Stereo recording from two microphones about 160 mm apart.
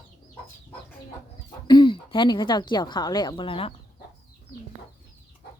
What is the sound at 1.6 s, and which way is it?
A woman's voice, 30° left (ahead or behind).